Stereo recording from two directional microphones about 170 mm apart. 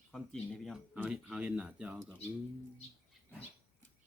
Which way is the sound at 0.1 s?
Centre (ahead or behind).